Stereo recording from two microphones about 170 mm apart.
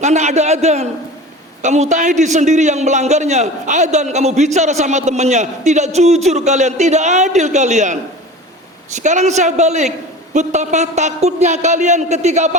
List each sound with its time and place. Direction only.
0.0 s a man's voice: 40° right (ahead or behind)